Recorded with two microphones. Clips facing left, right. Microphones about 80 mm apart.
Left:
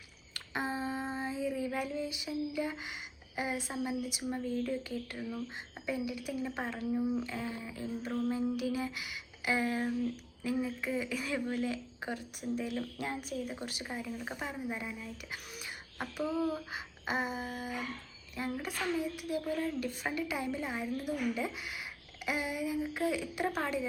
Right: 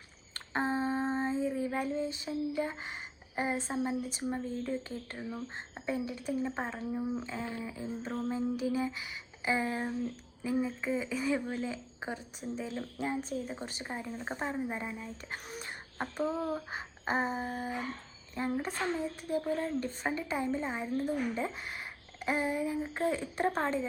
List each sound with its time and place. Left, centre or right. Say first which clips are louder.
0.3 s child singing: right 4 dB; right
3.3 s a woman's voice: right 3 dB; right